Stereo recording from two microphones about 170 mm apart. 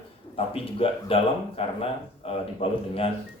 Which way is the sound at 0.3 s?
35° left (ahead or behind).